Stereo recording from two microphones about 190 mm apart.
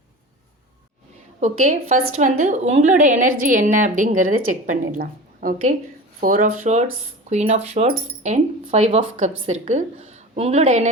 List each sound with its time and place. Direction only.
2.0 s a woman's voice: 40° right (ahead or behind)